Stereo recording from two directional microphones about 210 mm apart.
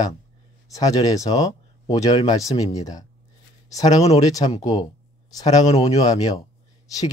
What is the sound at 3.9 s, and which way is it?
Speech, 30° left (ahead or behind).